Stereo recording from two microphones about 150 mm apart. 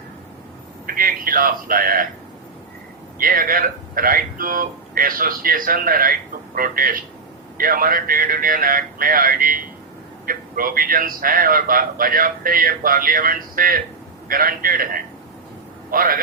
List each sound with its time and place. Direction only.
0.9 s speech: 70° right (ahead or behind)
3.2 s speech: 70° right (ahead or behind)